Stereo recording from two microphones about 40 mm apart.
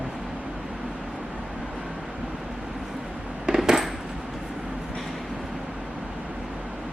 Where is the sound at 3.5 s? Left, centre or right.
Centre.